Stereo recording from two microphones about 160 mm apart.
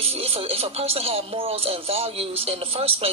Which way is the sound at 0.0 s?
35° right (ahead or behind).